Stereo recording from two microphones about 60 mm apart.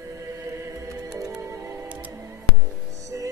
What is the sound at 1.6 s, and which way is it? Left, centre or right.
Music, right.